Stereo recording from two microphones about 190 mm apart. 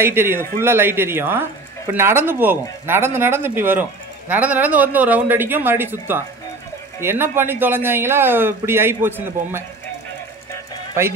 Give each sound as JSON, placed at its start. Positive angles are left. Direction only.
{"t": 0.0, "sound": "speech", "side_deg": -10}